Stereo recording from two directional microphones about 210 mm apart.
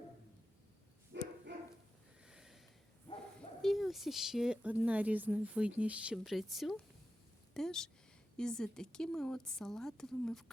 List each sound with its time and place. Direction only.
1.1 s dog: 55° right (ahead or behind)
2.2 s snort: 5° right (ahead or behind)
3.6 s a woman's voice: centre (ahead or behind)